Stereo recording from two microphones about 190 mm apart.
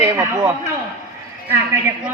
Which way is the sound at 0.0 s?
15° right (ahead or behind).